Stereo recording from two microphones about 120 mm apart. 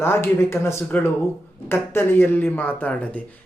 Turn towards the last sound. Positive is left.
turn(degrees=10)  # may be behind; listen again after turning